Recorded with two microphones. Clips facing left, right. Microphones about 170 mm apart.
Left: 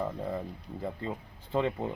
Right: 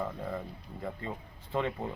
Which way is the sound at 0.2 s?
30° left (ahead or behind).